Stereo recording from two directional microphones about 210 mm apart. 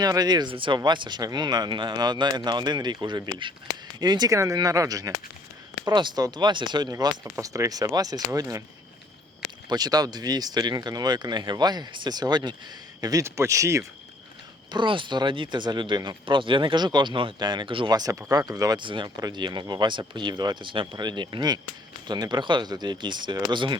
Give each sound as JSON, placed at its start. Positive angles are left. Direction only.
{"t": 0.0, "sound": "speech", "side_deg": -20}
{"t": 9.6, "sound": "speech", "side_deg": -20}